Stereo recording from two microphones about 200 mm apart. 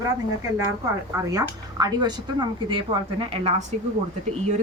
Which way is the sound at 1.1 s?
20° right (ahead or behind).